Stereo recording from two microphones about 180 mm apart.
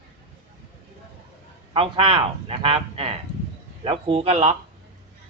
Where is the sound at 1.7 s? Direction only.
30° right (ahead or behind).